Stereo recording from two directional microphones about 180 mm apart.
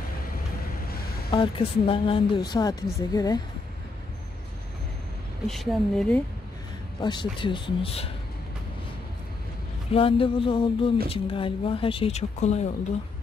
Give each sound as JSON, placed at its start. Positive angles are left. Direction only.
{"t": 1.3, "sound": "a woman's voice", "side_deg": 30}
{"t": 5.5, "sound": "speech", "side_deg": 0}
{"t": 7.0, "sound": "a woman's voice", "side_deg": 25}
{"t": 9.8, "sound": "a woman's voice", "side_deg": 30}